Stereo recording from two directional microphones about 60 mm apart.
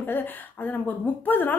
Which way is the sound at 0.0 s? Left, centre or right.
Left.